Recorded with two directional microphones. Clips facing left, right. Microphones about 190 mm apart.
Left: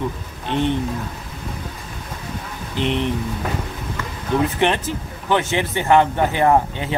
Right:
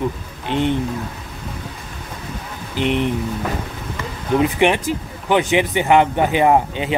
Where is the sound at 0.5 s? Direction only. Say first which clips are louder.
Right 1 dB; 15° right (ahead or behind).